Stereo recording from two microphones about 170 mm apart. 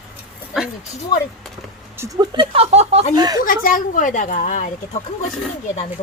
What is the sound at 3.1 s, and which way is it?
Speech, 25° right (ahead or behind).